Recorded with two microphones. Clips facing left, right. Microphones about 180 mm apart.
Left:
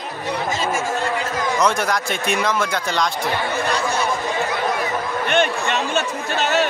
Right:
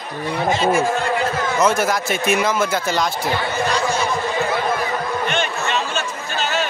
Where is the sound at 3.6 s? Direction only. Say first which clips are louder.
Right 3 dB; 60° left (ahead or behind).